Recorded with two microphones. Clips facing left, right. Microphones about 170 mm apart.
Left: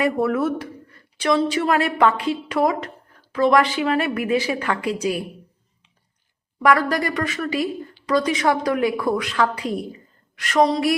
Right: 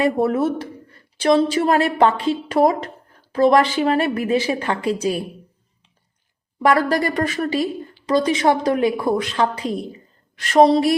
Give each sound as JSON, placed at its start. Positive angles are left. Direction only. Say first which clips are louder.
{"t": 0.0, "sound": "speech", "louder": "right 2 dB", "side_deg": -30}
{"t": 6.6, "sound": "speech", "louder": "right 2 dB", "side_deg": -30}